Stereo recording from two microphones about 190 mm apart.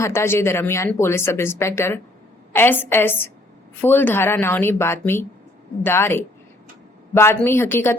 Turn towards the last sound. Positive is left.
turn(degrees=10)  # may be behind; listen again after turning